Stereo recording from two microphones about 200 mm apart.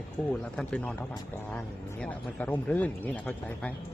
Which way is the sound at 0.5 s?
5° left (ahead or behind).